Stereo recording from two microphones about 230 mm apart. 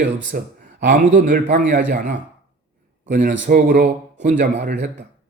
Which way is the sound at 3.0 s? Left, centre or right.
Right.